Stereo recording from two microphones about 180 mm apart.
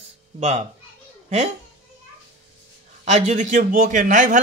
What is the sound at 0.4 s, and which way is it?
Speech, 40° right (ahead or behind).